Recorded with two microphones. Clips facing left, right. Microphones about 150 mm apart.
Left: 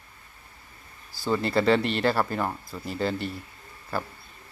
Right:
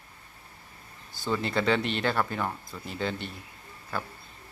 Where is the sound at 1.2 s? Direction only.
Centre (ahead or behind).